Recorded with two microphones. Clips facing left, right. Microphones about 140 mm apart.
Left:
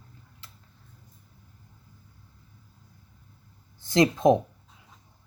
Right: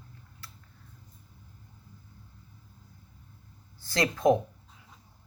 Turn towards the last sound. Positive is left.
turn(degrees=20)  # may be behind; listen again after turning